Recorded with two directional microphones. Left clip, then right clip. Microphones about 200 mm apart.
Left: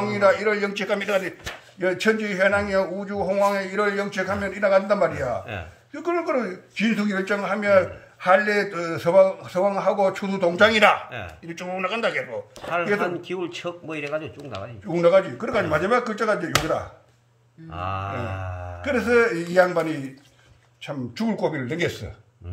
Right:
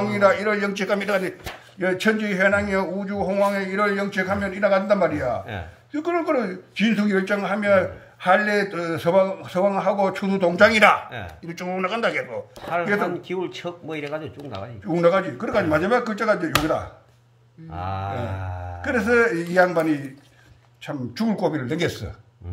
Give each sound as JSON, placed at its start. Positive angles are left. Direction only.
{"t": 0.0, "sound": "a man's voice", "side_deg": -20}
{"t": 12.5, "sound": "speech", "side_deg": 5}
{"t": 14.9, "sound": "speech", "side_deg": -15}
{"t": 17.7, "sound": "speech", "side_deg": 5}
{"t": 18.8, "sound": "speech", "side_deg": -15}